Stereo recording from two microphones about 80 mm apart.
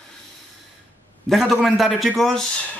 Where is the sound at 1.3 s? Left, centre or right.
Centre.